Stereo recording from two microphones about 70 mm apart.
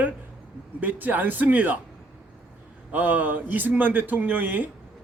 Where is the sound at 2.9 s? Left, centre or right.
Right.